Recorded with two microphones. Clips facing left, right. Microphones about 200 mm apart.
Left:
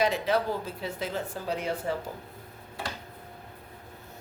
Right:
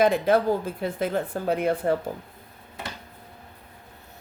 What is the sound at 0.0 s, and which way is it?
A woman's voice, 50° right (ahead or behind).